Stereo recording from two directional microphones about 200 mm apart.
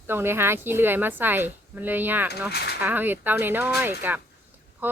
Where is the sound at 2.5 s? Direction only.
55° left (ahead or behind).